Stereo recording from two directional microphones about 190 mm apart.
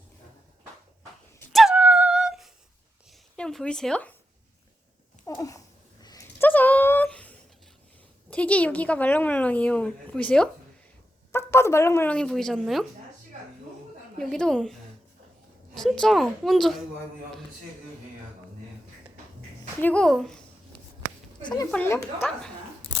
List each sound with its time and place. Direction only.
1.5 s a sound: 5° right (ahead or behind)
3.3 s speech: 5° left (ahead or behind)
5.2 s a sound: 15° left (ahead or behind)
8.3 s a woman's voice: 5° left (ahead or behind)
14.2 s a woman's voice: 5° left (ahead or behind)
19.8 s a woman's voice: 5° left (ahead or behind)
21.4 s speech: 20° left (ahead or behind)
21.7 s speech: 10° left (ahead or behind)